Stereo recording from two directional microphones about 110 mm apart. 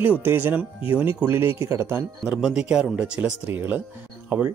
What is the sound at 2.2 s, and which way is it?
Speech, 10° right (ahead or behind).